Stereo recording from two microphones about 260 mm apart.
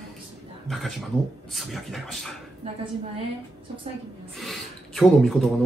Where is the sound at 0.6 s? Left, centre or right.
Centre.